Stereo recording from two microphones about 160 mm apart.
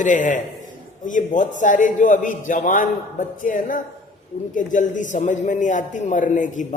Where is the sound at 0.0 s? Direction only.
55° left (ahead or behind).